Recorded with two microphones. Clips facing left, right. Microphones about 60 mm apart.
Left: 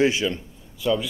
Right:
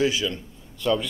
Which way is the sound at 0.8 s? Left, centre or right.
Centre.